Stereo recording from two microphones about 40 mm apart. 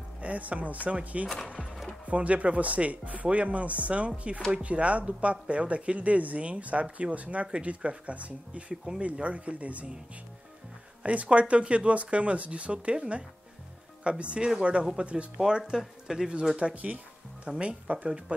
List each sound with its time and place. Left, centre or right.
0.2 s speech: right
11.0 s speech: right
15.8 s speech: centre
16.3 s speech: right